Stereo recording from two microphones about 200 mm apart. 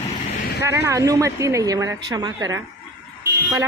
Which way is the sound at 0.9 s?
15° right (ahead or behind).